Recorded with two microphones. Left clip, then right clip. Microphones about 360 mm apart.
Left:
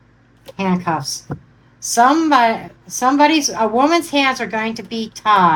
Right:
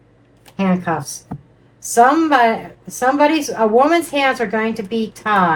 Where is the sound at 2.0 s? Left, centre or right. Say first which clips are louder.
Even; left.